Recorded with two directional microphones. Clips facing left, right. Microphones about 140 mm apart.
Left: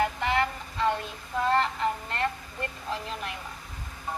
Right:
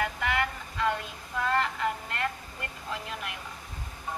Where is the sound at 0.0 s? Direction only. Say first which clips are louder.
Left 3 dB; 30° left (ahead or behind).